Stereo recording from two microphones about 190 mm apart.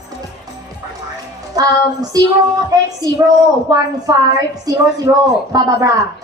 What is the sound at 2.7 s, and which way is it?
A woman's voice, 20° right (ahead or behind).